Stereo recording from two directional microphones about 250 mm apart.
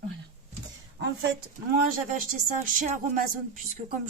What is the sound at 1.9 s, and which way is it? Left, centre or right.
Speech, right.